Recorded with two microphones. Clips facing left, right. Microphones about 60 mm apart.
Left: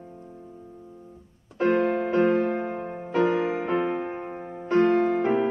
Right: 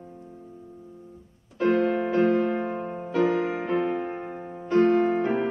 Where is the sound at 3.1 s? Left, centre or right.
Left.